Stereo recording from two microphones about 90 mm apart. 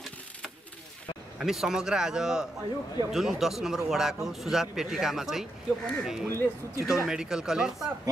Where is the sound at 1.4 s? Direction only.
5° right (ahead or behind).